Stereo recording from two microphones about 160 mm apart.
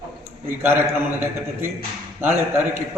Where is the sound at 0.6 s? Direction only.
15° right (ahead or behind).